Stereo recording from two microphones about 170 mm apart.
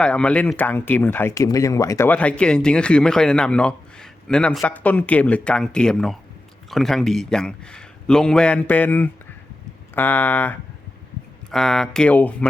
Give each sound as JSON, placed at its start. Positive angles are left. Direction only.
{"t": 0.0, "sound": "a man's voice", "side_deg": 5}